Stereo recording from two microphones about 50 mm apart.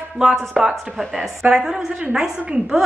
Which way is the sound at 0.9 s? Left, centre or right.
Centre.